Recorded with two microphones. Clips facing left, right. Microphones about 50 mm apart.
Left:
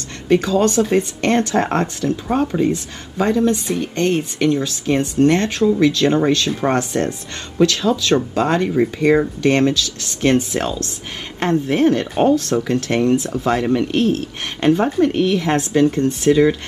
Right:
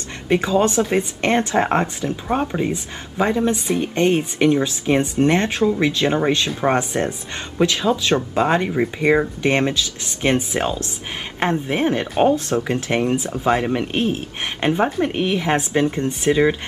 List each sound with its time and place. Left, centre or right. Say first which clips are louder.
0.3 s speech: left 2 dB; centre